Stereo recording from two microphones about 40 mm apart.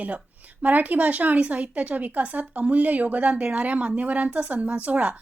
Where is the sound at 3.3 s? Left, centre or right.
Right.